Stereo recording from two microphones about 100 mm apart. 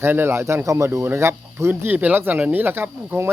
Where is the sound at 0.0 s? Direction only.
25° right (ahead or behind).